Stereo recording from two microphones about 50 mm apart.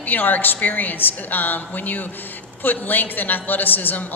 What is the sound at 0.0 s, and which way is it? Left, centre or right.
A man's voice, left.